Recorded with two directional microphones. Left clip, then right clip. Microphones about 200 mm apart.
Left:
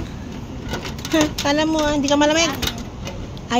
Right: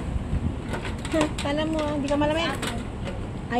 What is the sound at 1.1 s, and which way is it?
Speech, 45° left (ahead or behind).